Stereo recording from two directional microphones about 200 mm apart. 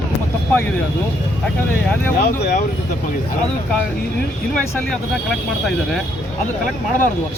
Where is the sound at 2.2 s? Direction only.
55° left (ahead or behind).